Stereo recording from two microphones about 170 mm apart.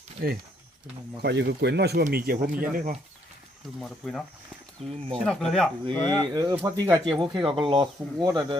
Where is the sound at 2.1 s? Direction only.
60° right (ahead or behind).